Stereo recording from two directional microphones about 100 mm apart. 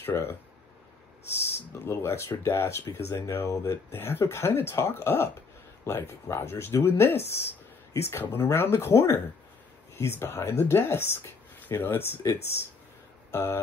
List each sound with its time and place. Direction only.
0.0 s speech: 25° left (ahead or behind)
1.9 s speech: 25° left (ahead or behind)